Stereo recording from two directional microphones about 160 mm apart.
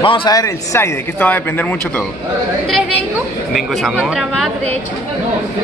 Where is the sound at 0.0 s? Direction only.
30° left (ahead or behind); by 2.0 s 10° left (ahead or behind).